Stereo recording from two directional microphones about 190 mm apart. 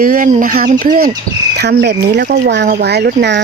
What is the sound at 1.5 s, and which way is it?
Speech, 60° right (ahead or behind).